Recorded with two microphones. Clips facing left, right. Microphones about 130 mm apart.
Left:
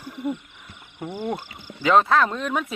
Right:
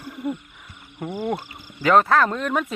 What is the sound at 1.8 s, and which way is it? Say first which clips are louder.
Speech: right 1 dB; 20° left (ahead or behind).